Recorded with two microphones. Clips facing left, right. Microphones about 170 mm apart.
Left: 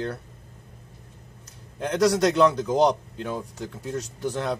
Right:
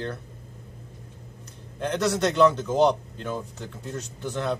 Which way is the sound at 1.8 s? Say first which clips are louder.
Left 3 dB; 10° left (ahead or behind).